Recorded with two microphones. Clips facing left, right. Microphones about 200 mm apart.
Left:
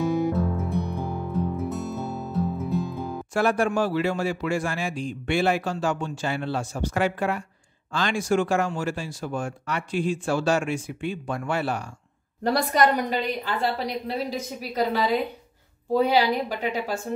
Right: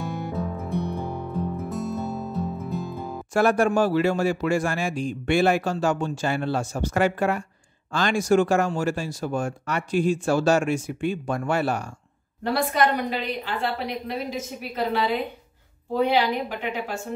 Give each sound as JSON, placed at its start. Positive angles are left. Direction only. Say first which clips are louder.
{"t": 0.0, "sound": "music", "louder": "left 6 dB", "side_deg": 0}
{"t": 3.3, "sound": "a man's voice", "louder": "right 3 dB", "side_deg": -45}
{"t": 12.4, "sound": "a woman's voice", "louder": "left 1 dB", "side_deg": 40}